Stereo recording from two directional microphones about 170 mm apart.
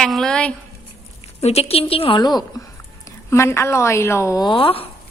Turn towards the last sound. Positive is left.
turn(degrees=30)  # may be behind; listen again after turning